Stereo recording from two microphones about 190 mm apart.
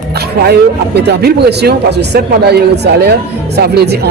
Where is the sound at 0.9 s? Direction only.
60° right (ahead or behind).